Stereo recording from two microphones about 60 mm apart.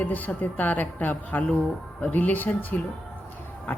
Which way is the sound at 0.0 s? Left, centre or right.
Left.